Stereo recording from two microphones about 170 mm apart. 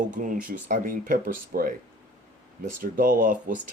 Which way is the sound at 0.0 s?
50° right (ahead or behind).